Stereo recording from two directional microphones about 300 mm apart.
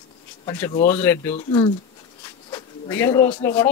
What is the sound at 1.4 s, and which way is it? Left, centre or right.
Speech, centre.